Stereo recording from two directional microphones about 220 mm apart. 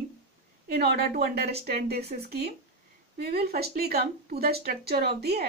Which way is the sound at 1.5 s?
30° right (ahead or behind).